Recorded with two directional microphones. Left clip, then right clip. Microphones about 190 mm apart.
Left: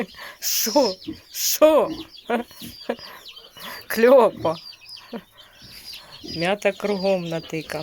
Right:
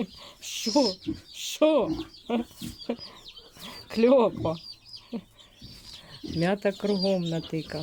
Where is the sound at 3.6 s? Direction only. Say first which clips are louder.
Left 9 dB; centre (ahead or behind).